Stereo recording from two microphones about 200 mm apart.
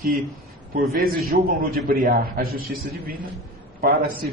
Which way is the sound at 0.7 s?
50° right (ahead or behind).